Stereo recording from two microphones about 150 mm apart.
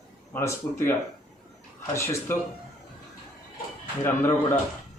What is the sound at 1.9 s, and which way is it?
Speech, 20° left (ahead or behind).